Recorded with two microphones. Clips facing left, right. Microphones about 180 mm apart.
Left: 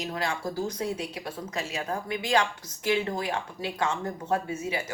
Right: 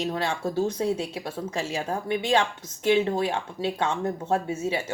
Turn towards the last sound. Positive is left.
turn(degrees=-25)  # may be behind; listen again after turning